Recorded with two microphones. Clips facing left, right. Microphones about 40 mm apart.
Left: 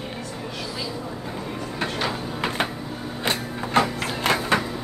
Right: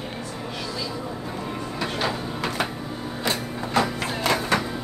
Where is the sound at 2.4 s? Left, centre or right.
Left.